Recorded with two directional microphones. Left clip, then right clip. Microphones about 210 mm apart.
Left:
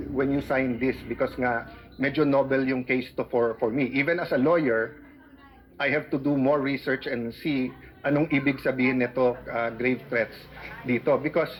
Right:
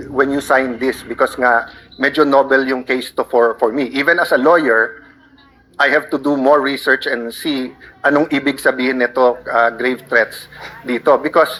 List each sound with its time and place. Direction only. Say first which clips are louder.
0.2 s speech: right 12 dB; 30° right (ahead or behind)